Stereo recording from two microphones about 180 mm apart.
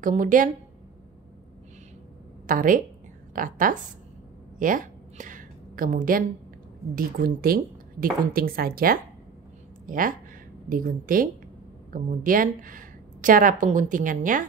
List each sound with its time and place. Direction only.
0.0 s a woman's voice: 50° right (ahead or behind)
2.4 s a woman's voice: 50° right (ahead or behind)
4.6 s a sound: 45° right (ahead or behind)
7.0 s a woman's voice: 55° right (ahead or behind)